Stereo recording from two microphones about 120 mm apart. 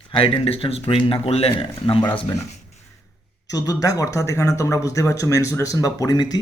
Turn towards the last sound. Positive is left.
turn(degrees=35)  # may be behind; listen again after turning